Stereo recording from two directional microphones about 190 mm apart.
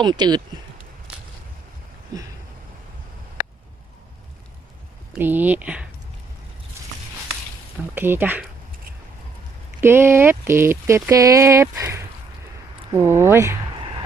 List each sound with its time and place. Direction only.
0.0 s speech: 25° right (ahead or behind)
2.1 s speech: 20° right (ahead or behind)
5.1 s speech: 10° right (ahead or behind)
6.8 s a sound: 15° right (ahead or behind)
7.9 s speech: 10° right (ahead or behind)
9.8 s speech: 10° right (ahead or behind)